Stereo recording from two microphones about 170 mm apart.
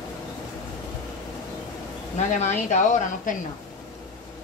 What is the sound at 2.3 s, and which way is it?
A woman's voice, 45° left (ahead or behind).